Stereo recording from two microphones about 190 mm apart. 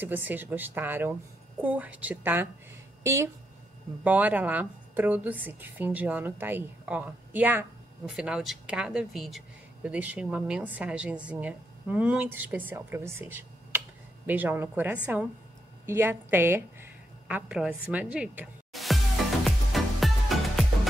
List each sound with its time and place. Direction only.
0.0 s a woman's voice: 10° right (ahead or behind)
19.4 s music: centre (ahead or behind)